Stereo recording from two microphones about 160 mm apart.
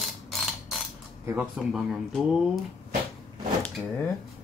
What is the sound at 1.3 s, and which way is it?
Speech, 5° right (ahead or behind).